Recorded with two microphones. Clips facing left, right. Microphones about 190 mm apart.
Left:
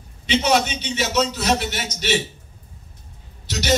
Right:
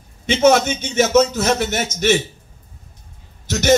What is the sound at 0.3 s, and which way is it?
A man's voice, 45° right (ahead or behind).